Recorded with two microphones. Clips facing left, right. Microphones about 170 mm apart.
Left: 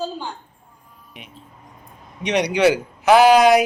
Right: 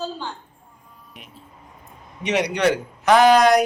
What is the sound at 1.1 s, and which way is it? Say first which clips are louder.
A man's voice: left 3 dB; centre (ahead or behind).